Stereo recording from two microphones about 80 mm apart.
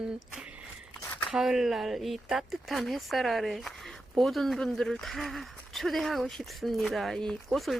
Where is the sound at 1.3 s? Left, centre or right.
Centre.